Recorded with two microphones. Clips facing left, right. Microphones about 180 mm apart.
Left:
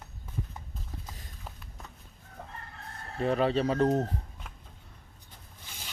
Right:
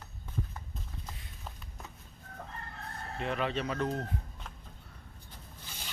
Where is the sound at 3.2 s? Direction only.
35° left (ahead or behind).